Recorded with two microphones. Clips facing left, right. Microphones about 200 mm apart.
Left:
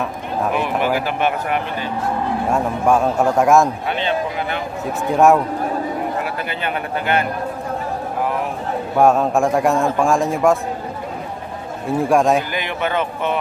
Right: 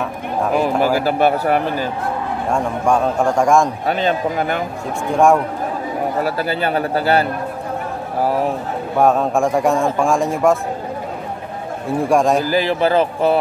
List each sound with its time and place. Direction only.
0.5 s a man's voice: 40° right (ahead or behind)
2.5 s speech: 5° left (ahead or behind)
3.8 s a man's voice: 40° right (ahead or behind)
5.1 s speech: 5° left (ahead or behind)
6.2 s a man's voice: 35° right (ahead or behind)
8.9 s speech: centre (ahead or behind)
12.0 s speech: centre (ahead or behind)
12.4 s a man's voice: 35° right (ahead or behind)